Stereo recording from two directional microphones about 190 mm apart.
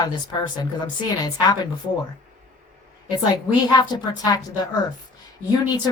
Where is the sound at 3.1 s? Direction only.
20° left (ahead or behind).